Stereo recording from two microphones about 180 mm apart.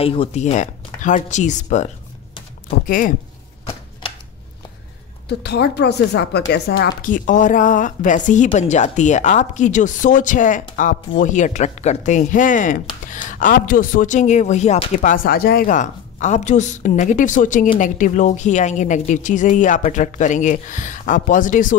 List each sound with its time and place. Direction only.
0.0 s speech: 30° left (ahead or behind)
5.4 s speech: 70° left (ahead or behind)
7.0 s speech: 50° left (ahead or behind)